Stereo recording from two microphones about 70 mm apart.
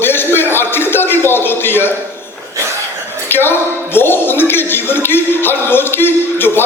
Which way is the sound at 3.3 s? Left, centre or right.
Left.